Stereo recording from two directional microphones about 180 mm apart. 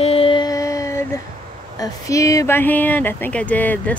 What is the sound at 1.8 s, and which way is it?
Speech, 20° left (ahead or behind).